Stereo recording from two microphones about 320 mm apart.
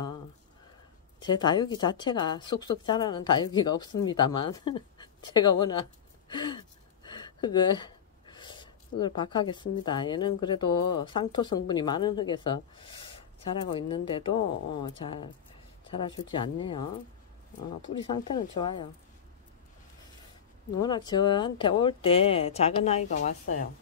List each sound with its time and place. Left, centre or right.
1.2 s speech: centre
18.0 s speech: centre
20.8 s speech: centre